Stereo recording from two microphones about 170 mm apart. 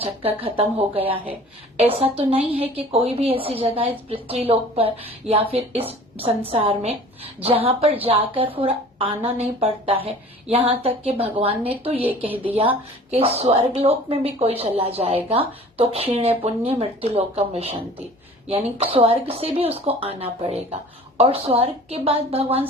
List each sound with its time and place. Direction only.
0.0 s speech: 35° right (ahead or behind)